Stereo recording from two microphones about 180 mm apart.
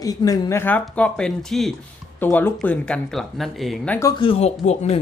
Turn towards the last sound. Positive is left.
turn(degrees=40)  # may be behind; listen again after turning